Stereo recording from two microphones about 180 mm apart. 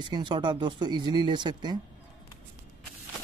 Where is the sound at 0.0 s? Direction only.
25° right (ahead or behind).